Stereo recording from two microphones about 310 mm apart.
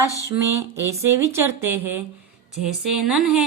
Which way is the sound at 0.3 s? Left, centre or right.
Centre.